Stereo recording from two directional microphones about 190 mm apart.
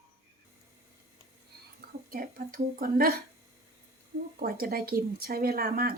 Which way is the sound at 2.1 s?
50° right (ahead or behind).